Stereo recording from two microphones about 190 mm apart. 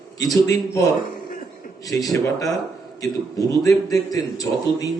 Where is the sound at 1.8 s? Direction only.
20° left (ahead or behind).